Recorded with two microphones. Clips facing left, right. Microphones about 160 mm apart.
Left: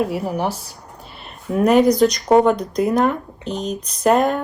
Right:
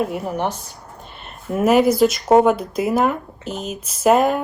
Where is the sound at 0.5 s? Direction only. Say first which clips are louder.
Left 1 dB; 40° left (ahead or behind).